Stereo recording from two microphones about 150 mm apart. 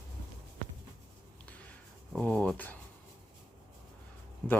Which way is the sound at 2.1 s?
10° left (ahead or behind).